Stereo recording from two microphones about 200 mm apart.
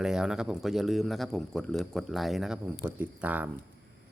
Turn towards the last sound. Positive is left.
turn(degrees=-10)  # may be behind; listen again after turning